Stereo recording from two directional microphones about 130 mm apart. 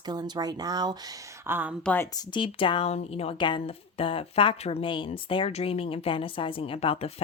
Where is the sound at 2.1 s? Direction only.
40° left (ahead or behind).